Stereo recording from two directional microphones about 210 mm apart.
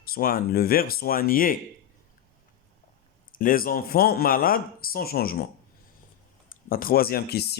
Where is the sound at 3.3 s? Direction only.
40° left (ahead or behind).